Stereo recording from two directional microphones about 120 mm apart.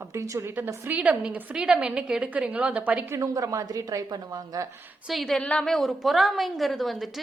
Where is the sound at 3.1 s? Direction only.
25° right (ahead or behind).